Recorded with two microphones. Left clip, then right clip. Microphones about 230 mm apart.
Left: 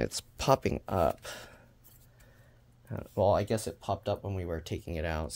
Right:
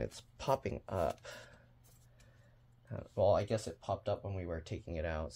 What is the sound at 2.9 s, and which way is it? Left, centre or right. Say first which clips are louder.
Speech: left 4 dB; left.